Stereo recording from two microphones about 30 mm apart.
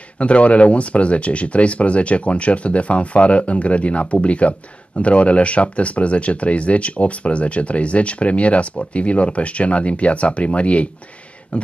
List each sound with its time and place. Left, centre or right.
0.2 s speech: left